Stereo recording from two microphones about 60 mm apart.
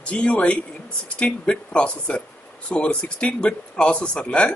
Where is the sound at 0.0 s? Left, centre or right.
Centre.